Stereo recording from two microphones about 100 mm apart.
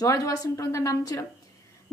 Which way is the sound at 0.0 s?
35° left (ahead or behind).